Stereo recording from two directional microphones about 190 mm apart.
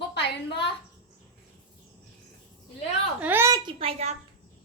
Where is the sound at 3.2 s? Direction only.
10° right (ahead or behind).